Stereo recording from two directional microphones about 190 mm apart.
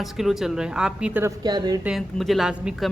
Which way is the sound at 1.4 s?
20° right (ahead or behind).